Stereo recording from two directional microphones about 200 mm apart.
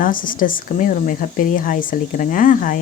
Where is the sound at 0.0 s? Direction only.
45° left (ahead or behind).